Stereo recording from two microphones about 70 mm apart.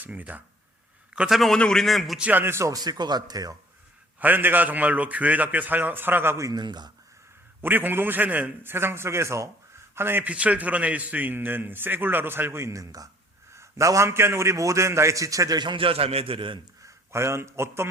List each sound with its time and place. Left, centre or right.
0.0 s a man's voice: right
1.3 s a man's voice: centre
2.3 s speech: right
2.6 s speech: right
4.2 s a man's voice: right
6.5 s speech: right
7.6 s a man's voice: right
8.7 s a man's voice: right
10.2 s a man's voice: centre; by 13.1 s right
13.5 s a man's voice: right
16.8 s a man's voice: right